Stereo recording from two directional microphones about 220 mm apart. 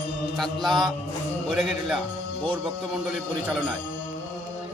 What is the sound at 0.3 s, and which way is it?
Speech, centre (ahead or behind).